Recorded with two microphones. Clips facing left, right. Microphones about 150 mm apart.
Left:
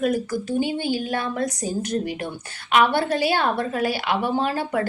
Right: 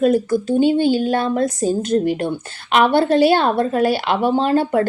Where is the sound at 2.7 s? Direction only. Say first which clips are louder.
Right 5 dB; 55° right (ahead or behind).